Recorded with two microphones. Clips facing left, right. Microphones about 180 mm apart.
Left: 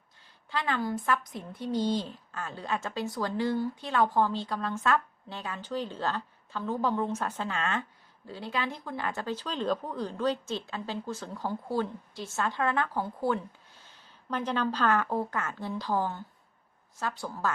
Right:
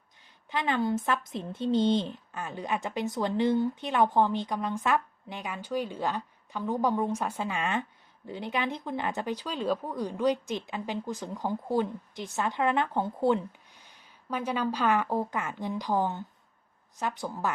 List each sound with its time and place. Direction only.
0.5 s speech: 20° right (ahead or behind)